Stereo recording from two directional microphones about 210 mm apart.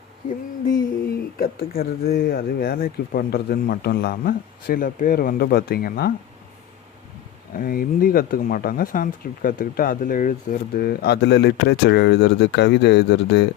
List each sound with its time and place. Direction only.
1.4 s speech: 45° left (ahead or behind)
7.5 s speech: 45° left (ahead or behind)